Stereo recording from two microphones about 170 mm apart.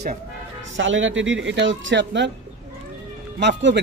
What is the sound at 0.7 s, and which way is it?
A man's voice, 90° right.